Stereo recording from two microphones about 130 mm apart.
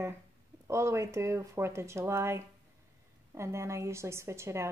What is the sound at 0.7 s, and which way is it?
A woman's voice, 20° right (ahead or behind).